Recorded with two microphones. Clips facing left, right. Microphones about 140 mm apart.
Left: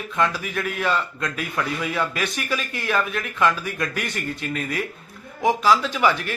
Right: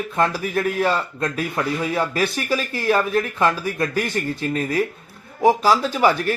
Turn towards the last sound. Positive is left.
turn(degrees=-40)  # may be behind; listen again after turning